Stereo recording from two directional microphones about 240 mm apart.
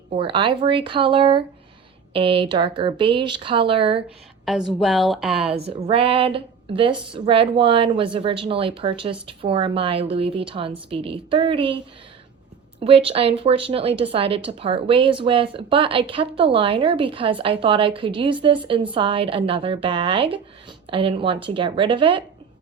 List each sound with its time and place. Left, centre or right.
0.2 s a woman's voice: right
4.4 s a woman's voice: centre
5.8 s a woman's voice: right
12.8 s a woman's voice: right